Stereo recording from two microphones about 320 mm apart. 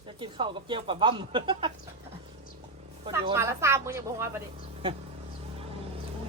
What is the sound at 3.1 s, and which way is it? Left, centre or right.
Speech, centre.